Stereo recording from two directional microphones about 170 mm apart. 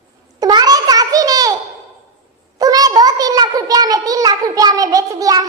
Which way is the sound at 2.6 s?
20° right (ahead or behind).